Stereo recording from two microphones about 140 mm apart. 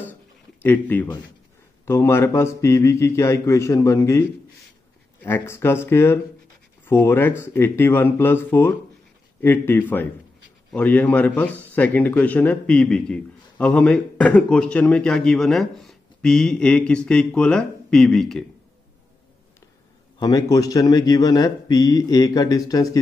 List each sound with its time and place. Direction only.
0.0 s a sound: 15° left (ahead or behind)
1.9 s speech: 15° left (ahead or behind)
5.2 s a man's voice: 15° left (ahead or behind)
20.2 s speech: 25° left (ahead or behind)